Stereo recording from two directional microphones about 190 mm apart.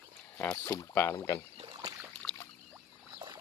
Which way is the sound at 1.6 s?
25° right (ahead or behind).